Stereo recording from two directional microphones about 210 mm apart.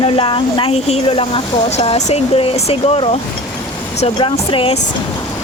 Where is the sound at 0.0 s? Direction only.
25° left (ahead or behind).